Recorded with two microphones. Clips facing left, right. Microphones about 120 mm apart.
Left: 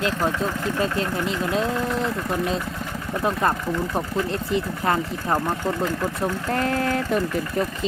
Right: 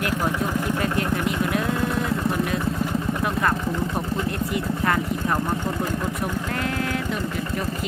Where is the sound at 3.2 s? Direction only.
30° left (ahead or behind).